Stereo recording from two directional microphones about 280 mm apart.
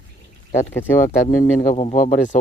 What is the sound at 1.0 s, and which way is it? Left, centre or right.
Speech, left.